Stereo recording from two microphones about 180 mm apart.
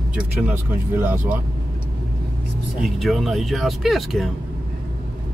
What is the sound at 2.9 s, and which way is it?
Speech, centre (ahead or behind).